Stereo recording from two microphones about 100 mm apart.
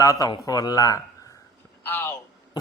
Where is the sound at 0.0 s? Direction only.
35° left (ahead or behind).